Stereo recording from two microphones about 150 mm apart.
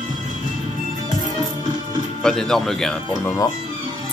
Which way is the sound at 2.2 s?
5° left (ahead or behind).